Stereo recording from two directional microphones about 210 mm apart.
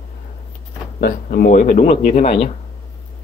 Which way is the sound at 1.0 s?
45° left (ahead or behind).